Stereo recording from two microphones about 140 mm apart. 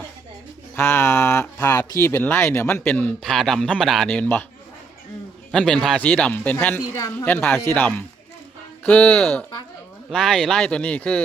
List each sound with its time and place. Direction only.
0.8 s speech: 15° left (ahead or behind)
3.2 s speech: centre (ahead or behind)
5.5 s speech: 5° left (ahead or behind)
6.9 s speech: 25° left (ahead or behind)
7.3 s speech: 10° left (ahead or behind)